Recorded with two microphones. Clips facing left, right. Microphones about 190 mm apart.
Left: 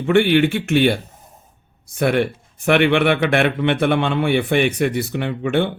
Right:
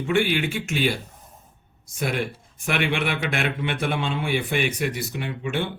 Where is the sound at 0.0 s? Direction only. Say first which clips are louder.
Left 8 dB; 60° left (ahead or behind).